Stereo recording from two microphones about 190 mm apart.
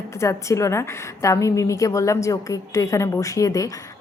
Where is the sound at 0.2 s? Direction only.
15° left (ahead or behind).